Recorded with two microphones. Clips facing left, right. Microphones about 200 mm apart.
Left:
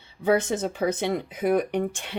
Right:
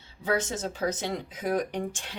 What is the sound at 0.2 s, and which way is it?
Speech, 60° left (ahead or behind).